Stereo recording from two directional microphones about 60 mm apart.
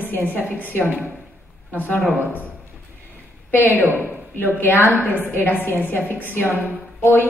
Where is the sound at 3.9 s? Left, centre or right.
Left.